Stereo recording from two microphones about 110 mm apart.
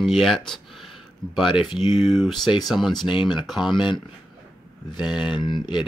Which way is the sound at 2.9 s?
45° left (ahead or behind).